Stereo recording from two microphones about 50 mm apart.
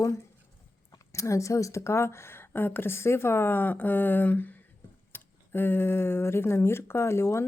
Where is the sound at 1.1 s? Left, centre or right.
Left.